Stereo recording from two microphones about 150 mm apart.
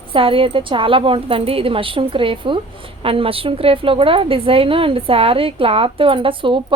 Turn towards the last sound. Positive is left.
turn(degrees=-35)  # may be behind; listen again after turning